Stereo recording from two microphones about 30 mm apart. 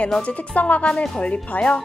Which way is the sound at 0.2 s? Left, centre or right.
Left.